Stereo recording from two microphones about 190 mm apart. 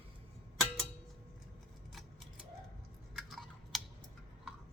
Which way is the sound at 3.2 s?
Centre (ahead or behind).